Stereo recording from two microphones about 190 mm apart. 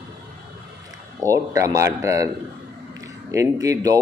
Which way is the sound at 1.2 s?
15° right (ahead or behind).